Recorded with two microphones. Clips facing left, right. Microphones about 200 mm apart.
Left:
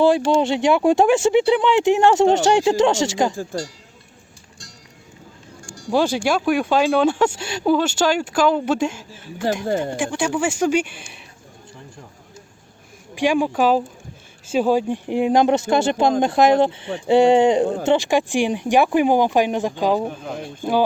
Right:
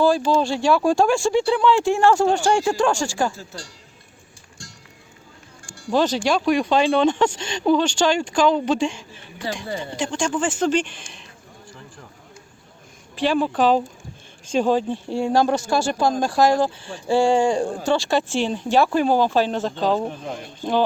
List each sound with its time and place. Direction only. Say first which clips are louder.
0.0 s speech: left 2 dB; 20° left (ahead or behind)
3.5 s speech: left 11 dB; 50° left (ahead or behind)
5.9 s speech: left 1 dB; 10° left (ahead or behind)
9.6 s speech: left 7 dB; 45° left (ahead or behind)
10.0 s speech: left 2 dB; 10° left (ahead or behind)
13.1 s speech: left 2 dB; 15° left (ahead or behind)